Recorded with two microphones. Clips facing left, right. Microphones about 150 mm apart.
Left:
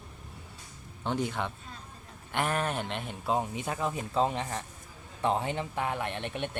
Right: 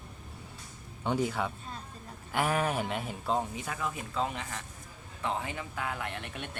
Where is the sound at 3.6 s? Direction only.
30° left (ahead or behind).